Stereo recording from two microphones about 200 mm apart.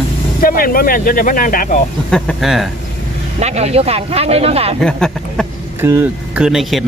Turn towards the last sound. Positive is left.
turn(degrees=0)  # may be behind; listen again after turning